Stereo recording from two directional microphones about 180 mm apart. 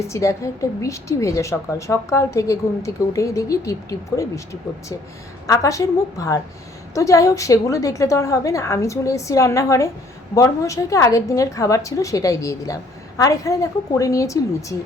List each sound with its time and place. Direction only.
0.1 s a woman's voice: 15° left (ahead or behind)
5.5 s a woman's voice: 20° left (ahead or behind)